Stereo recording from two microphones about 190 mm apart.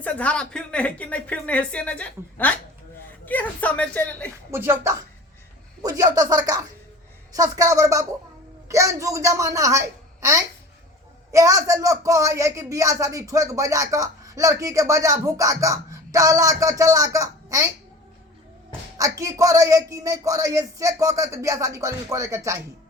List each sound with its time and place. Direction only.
0.0 s speech: 5° left (ahead or behind)
4.5 s a child's voice: 10° right (ahead or behind)
18.7 s speech: 20° right (ahead or behind)